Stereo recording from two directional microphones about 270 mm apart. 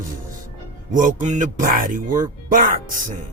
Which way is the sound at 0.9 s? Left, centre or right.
Right.